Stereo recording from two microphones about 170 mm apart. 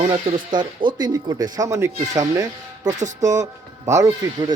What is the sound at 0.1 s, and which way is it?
Speech, 25° right (ahead or behind).